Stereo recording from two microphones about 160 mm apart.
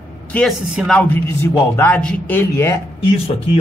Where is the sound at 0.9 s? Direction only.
10° left (ahead or behind).